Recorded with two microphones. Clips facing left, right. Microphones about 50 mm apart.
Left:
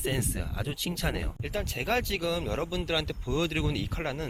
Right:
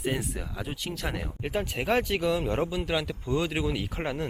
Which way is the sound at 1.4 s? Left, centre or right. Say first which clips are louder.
Right 6 dB; centre.